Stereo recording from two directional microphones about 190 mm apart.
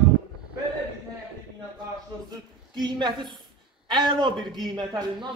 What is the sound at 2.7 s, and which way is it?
A man's voice, 25° right (ahead or behind).